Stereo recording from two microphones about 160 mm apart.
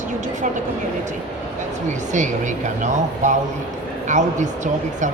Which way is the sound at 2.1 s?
50° right (ahead or behind).